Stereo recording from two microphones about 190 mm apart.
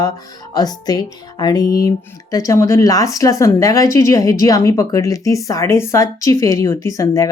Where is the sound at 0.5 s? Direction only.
20° left (ahead or behind).